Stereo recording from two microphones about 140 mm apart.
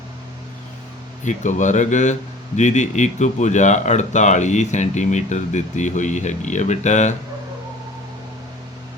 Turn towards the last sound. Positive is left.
turn(degrees=55)  # may be behind; listen again after turning